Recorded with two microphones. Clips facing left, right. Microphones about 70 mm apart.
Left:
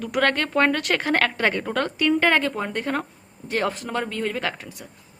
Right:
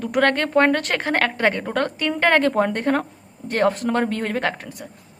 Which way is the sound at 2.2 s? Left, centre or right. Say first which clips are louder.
Right 4 dB; right.